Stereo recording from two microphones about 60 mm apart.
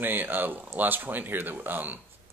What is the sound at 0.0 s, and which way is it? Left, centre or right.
Speech, right.